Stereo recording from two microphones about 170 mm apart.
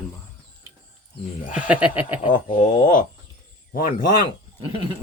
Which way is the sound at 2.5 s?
50° left (ahead or behind).